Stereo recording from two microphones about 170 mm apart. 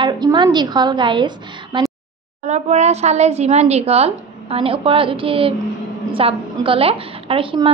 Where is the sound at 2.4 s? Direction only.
40° right (ahead or behind).